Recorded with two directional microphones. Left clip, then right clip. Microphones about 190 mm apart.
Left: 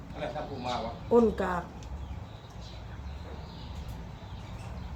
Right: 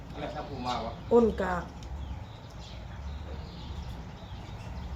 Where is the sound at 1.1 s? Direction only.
15° left (ahead or behind).